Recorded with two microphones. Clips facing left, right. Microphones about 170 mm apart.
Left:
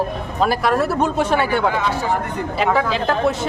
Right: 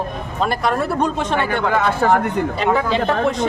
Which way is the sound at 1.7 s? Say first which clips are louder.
Right 4 dB; 55° right (ahead or behind).